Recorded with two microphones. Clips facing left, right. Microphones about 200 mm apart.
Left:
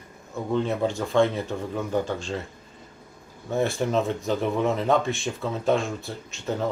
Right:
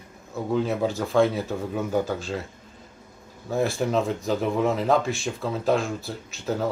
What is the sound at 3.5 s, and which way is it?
Speech, centre (ahead or behind).